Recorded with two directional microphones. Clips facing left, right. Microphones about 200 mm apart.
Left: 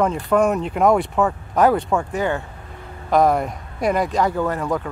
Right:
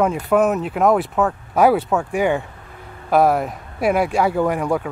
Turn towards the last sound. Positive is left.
turn(degrees=-10)  # may be behind; listen again after turning